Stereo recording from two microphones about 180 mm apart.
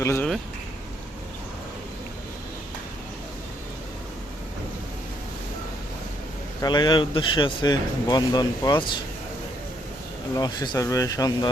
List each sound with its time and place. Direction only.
0.0 s speech: 15° left (ahead or behind)
6.6 s speech: 25° left (ahead or behind)
10.3 s speech: 20° left (ahead or behind)